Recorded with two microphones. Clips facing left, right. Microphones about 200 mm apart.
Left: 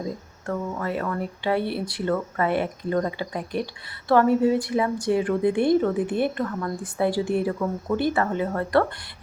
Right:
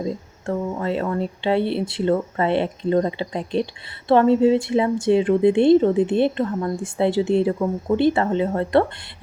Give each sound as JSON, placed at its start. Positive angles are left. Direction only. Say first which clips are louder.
{"t": 0.4, "sound": "a woman's voice", "louder": "right 4 dB", "side_deg": -25}